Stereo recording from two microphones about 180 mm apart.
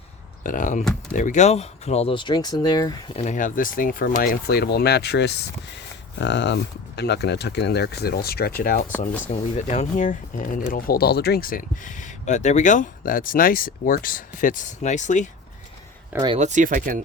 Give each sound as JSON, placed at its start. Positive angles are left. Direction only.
{"t": 0.4, "sound": "speech", "side_deg": 45}
{"t": 3.2, "sound": "speech", "side_deg": 45}
{"t": 9.2, "sound": "speech", "side_deg": 40}
{"t": 16.4, "sound": "speech", "side_deg": -45}